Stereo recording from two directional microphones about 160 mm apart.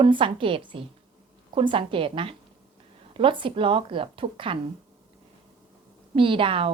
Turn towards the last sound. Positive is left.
turn(degrees=-35)  # may be behind; listen again after turning